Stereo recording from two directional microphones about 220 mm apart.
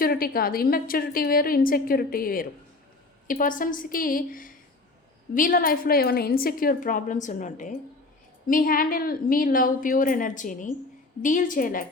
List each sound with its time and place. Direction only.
0.0 s a woman's voice: 40° left (ahead or behind)